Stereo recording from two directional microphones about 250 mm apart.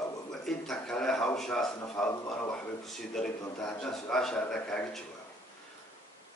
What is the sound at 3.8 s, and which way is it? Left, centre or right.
A man's voice, centre.